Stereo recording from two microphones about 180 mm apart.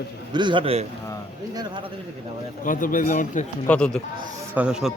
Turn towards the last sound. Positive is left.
turn(degrees=-5)  # may be behind; listen again after turning